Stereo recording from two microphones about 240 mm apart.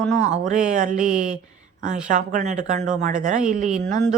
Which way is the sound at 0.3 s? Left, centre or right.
Right.